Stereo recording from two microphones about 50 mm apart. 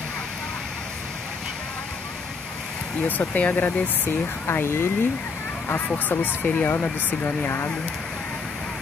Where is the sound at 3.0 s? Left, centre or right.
Left.